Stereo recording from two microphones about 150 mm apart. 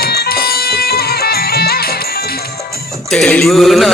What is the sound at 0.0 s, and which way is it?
Music, 90° left.